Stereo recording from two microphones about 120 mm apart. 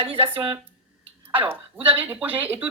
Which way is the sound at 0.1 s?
15° right (ahead or behind).